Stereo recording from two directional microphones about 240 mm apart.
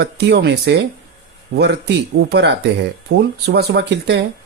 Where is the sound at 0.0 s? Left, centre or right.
Right.